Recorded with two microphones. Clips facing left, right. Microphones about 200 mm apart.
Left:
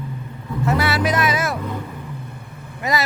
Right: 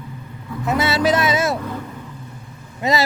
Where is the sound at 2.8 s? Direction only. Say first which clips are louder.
Right 3 dB; 25° right (ahead or behind).